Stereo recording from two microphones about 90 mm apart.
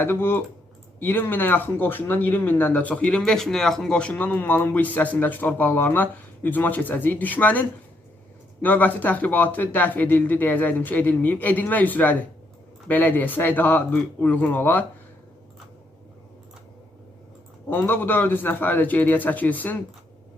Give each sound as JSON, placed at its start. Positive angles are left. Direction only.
{"t": 0.0, "sound": "speech", "side_deg": 25}
{"t": 17.7, "sound": "speech", "side_deg": 25}